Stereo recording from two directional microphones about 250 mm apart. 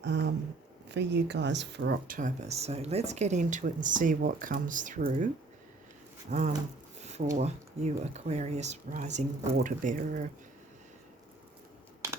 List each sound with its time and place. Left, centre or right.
0.0 s speech: right
6.3 s speech: right